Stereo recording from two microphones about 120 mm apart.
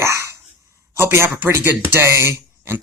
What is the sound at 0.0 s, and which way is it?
Speech, 25° right (ahead or behind).